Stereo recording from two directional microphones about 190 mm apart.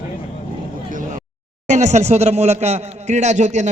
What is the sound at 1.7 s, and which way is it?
Speech, 40° right (ahead or behind).